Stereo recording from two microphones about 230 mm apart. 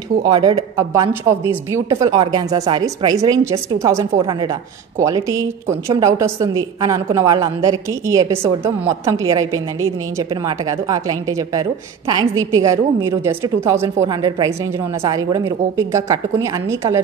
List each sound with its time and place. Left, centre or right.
0.2 s a woman's voice: centre